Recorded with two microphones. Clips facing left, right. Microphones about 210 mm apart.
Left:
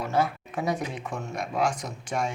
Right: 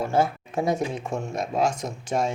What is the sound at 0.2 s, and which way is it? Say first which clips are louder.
Speech: right 2 dB; 25° right (ahead or behind).